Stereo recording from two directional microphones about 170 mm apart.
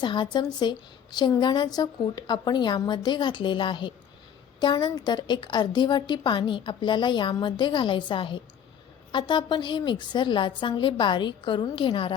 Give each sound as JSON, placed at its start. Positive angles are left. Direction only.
{"t": 0.0, "sound": "a woman's voice", "side_deg": 25}